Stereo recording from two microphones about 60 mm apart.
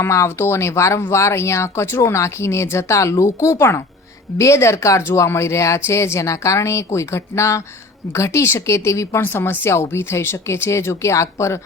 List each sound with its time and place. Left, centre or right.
0.0 s speech: left
9.2 s speech: left